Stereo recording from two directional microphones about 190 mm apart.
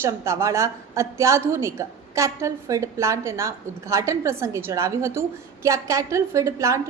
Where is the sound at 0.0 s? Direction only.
15° right (ahead or behind).